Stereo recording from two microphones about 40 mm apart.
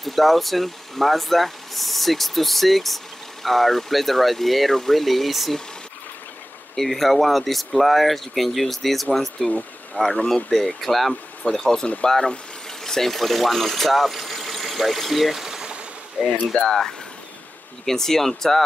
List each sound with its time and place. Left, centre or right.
0.0 s speech: centre
6.7 s speech: centre
16.5 s speech: centre